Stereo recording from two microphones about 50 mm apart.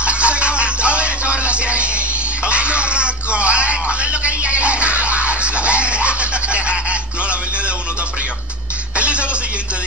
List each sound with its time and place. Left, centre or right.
0.0 s music: right
8.9 s music: right